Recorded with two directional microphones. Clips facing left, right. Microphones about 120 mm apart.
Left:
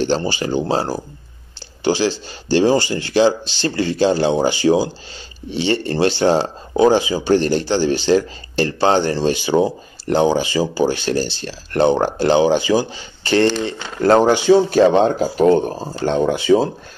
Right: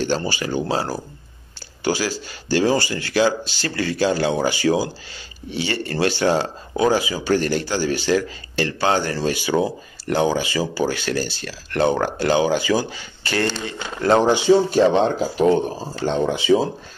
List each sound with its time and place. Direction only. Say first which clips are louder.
0.0 s speech: left 4 dB; 30° left (ahead or behind)
13.7 s speech: left 4 dB; 40° left (ahead or behind)
14.2 s speech: left 3 dB; 90° left
15.0 s speech: left 3 dB; 45° left (ahead or behind)